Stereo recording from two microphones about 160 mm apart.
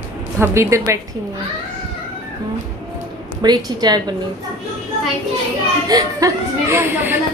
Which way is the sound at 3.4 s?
25° right (ahead or behind).